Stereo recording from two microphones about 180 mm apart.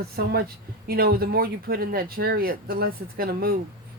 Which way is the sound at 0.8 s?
55° right (ahead or behind).